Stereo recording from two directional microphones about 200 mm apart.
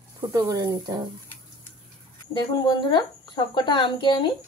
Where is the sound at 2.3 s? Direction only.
20° left (ahead or behind).